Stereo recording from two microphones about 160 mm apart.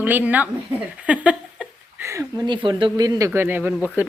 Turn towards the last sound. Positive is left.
turn(degrees=-10)  # may be behind; listen again after turning